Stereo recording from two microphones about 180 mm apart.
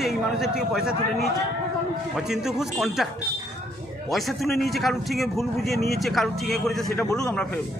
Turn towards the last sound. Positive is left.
turn(degrees=15)  # may be behind; listen again after turning